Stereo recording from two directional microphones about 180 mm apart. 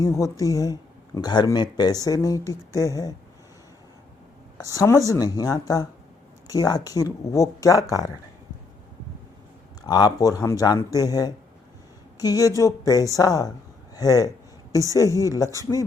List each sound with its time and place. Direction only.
0.0 s speech: 15° left (ahead or behind)
4.5 s speech: 20° left (ahead or behind)
9.8 s speech: 20° left (ahead or behind)